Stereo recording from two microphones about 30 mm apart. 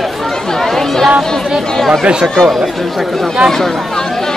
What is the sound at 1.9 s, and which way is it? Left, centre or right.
Speech, right.